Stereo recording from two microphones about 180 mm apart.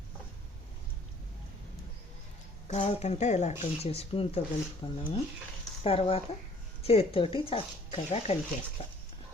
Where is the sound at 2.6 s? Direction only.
40° left (ahead or behind).